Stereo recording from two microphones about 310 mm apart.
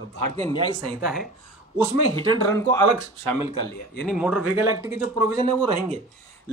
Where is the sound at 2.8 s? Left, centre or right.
Right.